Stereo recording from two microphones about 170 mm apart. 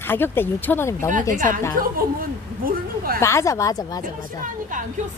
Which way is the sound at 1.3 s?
50° right (ahead or behind).